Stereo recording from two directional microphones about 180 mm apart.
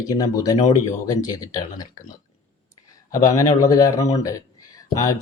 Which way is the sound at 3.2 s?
20° left (ahead or behind).